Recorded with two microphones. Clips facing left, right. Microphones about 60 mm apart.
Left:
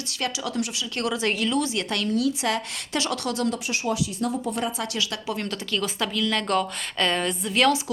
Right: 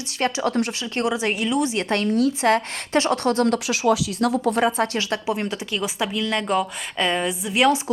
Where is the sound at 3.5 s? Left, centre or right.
Right.